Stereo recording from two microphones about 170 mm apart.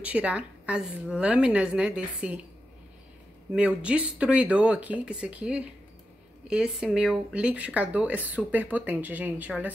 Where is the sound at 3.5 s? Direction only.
5° right (ahead or behind).